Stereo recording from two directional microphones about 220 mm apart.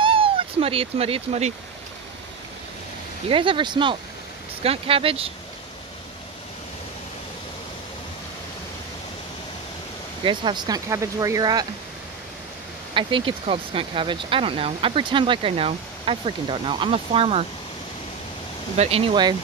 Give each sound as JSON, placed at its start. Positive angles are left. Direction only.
{"t": 0.0, "sound": "speech", "side_deg": -25}
{"t": 3.3, "sound": "speech", "side_deg": -25}
{"t": 10.2, "sound": "speech", "side_deg": -20}
{"t": 12.9, "sound": "speech", "side_deg": -25}
{"t": 18.8, "sound": "speech", "side_deg": -25}